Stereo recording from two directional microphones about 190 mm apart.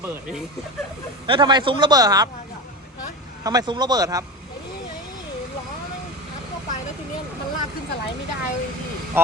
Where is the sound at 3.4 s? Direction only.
20° right (ahead or behind).